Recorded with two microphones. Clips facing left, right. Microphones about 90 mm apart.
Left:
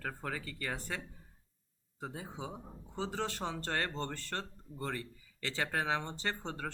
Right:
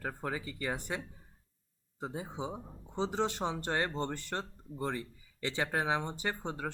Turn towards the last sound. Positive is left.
turn(degrees=-15)  # may be behind; listen again after turning